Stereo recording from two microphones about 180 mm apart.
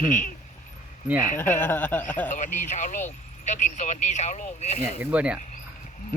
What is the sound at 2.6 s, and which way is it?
Speech, 40° left (ahead or behind).